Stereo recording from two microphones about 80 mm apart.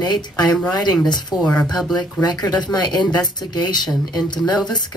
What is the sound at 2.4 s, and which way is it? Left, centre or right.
Speech, left.